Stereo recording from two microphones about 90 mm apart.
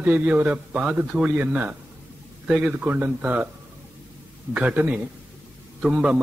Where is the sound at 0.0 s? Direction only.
20° right (ahead or behind).